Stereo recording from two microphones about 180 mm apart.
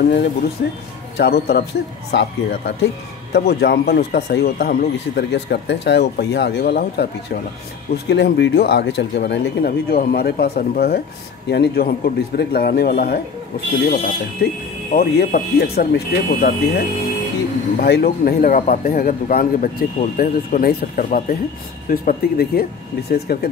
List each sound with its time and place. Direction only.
0.1 s speech: 65° left (ahead or behind)
2.1 s speech: 90° left
3.3 s speech: 65° left (ahead or behind)
14.4 s a man's voice: 60° left (ahead or behind)